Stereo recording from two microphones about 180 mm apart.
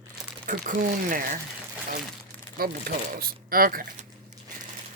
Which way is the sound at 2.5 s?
55° right (ahead or behind).